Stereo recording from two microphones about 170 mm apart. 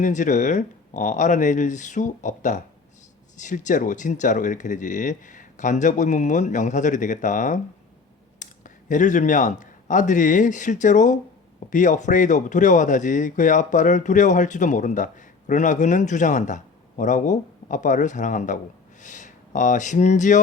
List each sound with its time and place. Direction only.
0.0 s speech: 45° left (ahead or behind)